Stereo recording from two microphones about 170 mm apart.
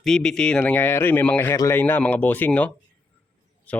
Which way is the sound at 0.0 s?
5° left (ahead or behind).